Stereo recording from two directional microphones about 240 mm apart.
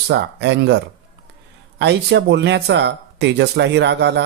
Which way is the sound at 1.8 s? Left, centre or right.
Right.